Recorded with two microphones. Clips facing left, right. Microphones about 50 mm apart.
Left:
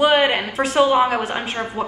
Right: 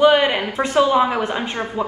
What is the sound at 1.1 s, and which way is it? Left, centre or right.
Speech, centre.